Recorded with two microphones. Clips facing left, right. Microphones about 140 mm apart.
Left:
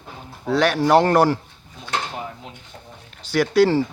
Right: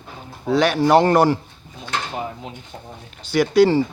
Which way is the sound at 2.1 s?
20° right (ahead or behind).